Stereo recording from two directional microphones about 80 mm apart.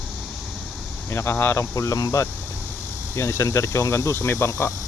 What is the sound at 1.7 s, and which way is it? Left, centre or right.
Speech, left.